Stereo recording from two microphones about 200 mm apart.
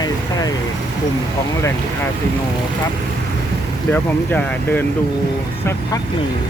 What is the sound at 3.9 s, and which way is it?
Speech, 10° left (ahead or behind).